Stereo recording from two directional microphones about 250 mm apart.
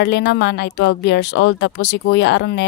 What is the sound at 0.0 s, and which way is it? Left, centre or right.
A woman's voice, left.